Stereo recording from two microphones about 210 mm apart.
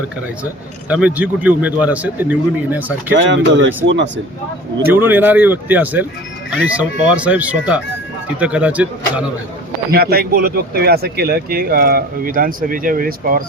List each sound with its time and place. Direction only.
0.9 s speech: 5° right (ahead or behind)
3.2 s speech: 60° right (ahead or behind)
4.9 s speech: 10° right (ahead or behind)
9.9 s speech: 45° right (ahead or behind)